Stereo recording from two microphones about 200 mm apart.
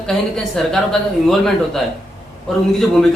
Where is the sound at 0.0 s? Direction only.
Centre (ahead or behind).